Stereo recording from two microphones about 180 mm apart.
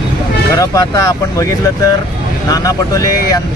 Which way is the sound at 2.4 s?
20° left (ahead or behind).